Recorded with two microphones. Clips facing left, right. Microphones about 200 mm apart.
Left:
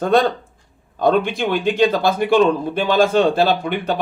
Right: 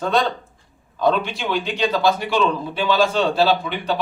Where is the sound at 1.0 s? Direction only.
50° left (ahead or behind).